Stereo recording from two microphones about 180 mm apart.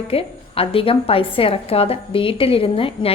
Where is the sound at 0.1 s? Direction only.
30° left (ahead or behind).